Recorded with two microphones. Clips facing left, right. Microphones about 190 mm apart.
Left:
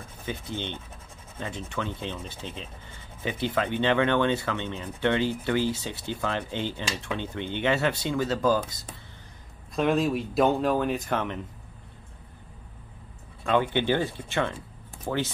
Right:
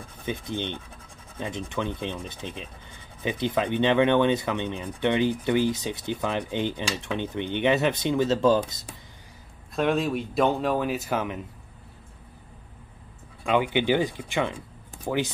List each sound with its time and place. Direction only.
0.2 s speech: 15° right (ahead or behind)
9.8 s speech: centre (ahead or behind)
13.4 s speech: 15° right (ahead or behind)